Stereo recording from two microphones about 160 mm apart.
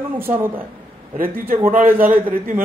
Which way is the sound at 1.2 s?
65° right (ahead or behind).